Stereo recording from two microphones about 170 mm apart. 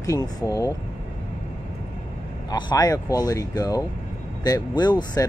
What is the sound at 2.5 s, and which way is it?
Speech, 25° left (ahead or behind).